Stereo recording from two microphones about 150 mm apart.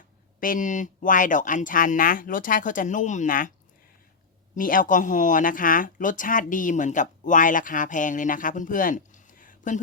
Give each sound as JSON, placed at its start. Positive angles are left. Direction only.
{"t": 0.3, "sound": "speech", "side_deg": 65}
{"t": 4.5, "sound": "speech", "side_deg": 65}